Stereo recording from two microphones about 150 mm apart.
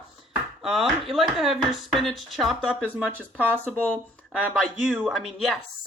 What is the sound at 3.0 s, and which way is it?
Speech, 10° right (ahead or behind).